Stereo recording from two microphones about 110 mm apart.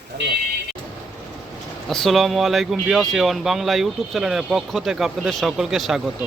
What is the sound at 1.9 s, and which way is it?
Speech, centre (ahead or behind).